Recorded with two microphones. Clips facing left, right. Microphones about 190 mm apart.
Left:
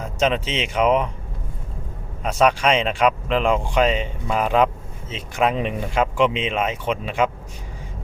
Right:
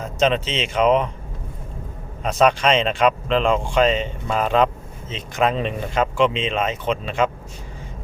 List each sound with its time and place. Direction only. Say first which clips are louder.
0.0 s speech: right 2 dB; 10° left (ahead or behind)
2.2 s speech: right 1 dB; 10° left (ahead or behind)